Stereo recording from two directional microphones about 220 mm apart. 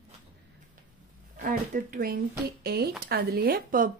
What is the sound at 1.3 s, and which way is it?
Speech, 40° right (ahead or behind).